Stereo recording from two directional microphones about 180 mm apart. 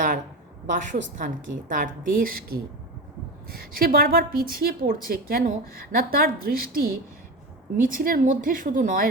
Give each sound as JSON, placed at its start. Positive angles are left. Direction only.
{"t": 1.2, "sound": "a woman's voice", "side_deg": -50}